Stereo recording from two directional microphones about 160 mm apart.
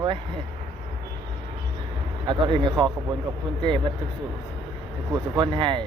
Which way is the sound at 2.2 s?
30° right (ahead or behind).